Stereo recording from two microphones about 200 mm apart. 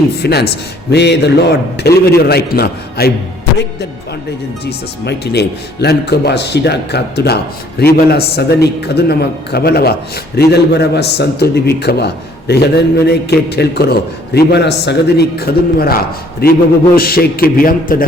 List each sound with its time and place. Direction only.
0.2 s a man's voice: 55° left (ahead or behind)
4.6 s a man's voice: 55° left (ahead or behind)